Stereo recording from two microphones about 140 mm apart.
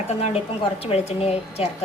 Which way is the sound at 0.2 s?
45° left (ahead or behind).